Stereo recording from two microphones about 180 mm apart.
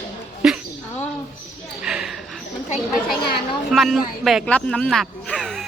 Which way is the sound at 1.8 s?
5° right (ahead or behind).